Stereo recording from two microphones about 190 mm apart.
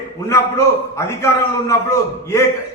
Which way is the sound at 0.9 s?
15° left (ahead or behind).